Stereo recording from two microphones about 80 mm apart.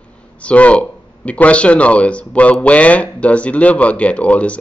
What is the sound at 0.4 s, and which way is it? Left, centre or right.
Speech, centre.